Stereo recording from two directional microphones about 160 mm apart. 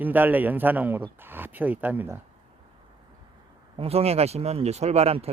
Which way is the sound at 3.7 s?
40° right (ahead or behind).